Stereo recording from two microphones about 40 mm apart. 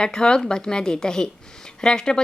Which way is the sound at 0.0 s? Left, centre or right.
Centre.